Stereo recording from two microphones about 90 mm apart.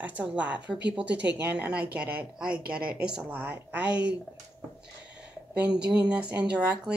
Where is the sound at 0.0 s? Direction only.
15° right (ahead or behind).